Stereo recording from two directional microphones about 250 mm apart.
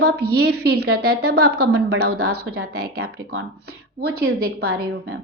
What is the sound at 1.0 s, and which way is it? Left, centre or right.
A woman's voice, right.